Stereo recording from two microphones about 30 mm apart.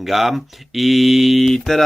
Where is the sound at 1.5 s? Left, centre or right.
Centre.